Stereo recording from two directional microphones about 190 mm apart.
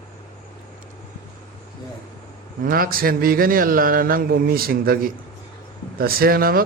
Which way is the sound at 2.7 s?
50° right (ahead or behind).